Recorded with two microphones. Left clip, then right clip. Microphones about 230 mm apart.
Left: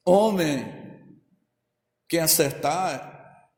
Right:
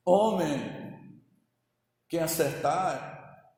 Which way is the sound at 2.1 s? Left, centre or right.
Left.